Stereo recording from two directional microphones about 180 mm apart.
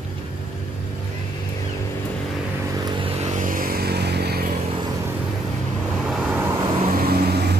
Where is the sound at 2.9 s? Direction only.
30° right (ahead or behind); by 4.4 s 60° right (ahead or behind).